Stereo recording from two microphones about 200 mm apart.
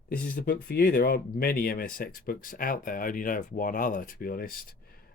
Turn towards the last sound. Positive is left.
turn(degrees=45)  # may be behind; listen again after turning